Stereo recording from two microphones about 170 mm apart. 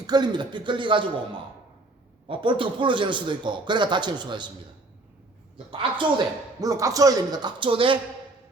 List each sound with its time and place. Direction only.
0.1 s a man's voice: 25° right (ahead or behind)
5.7 s a man's voice: 25° right (ahead or behind)